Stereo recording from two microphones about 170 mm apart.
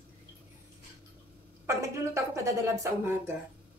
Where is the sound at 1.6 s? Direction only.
15° right (ahead or behind).